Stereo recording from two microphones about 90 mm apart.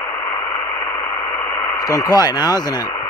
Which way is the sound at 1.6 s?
40° left (ahead or behind).